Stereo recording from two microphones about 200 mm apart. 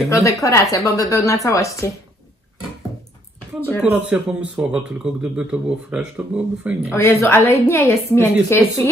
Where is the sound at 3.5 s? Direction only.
10° left (ahead or behind).